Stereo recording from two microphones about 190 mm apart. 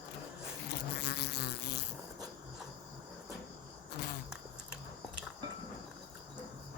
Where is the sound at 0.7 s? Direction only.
60° left (ahead or behind).